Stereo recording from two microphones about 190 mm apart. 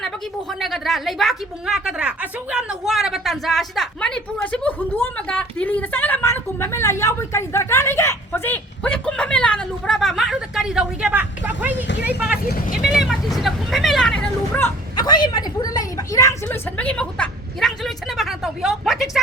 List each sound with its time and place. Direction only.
0.6 s a woman's voice: centre (ahead or behind)
12.5 s speech: 50° left (ahead or behind)
13.3 s a sound: centre (ahead or behind)
14.9 s a woman's voice: 25° left (ahead or behind); by 19.2 s centre (ahead or behind)